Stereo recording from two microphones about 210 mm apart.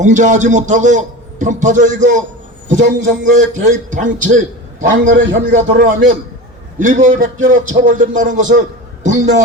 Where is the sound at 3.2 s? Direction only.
35° right (ahead or behind).